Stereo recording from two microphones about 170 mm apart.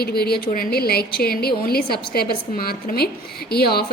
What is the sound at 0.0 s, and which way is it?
A woman's voice, 65° left (ahead or behind).